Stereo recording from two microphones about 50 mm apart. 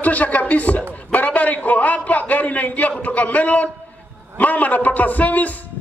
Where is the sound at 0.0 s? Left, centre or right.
Left.